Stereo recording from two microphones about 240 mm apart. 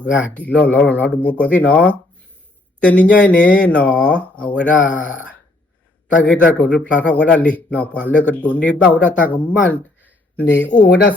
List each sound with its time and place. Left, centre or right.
0.0 s speech: centre
0.3 s speech: centre
6.2 s speech: centre
10.8 s speech: left